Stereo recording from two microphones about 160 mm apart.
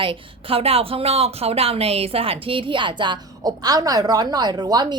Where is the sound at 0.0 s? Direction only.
35° right (ahead or behind).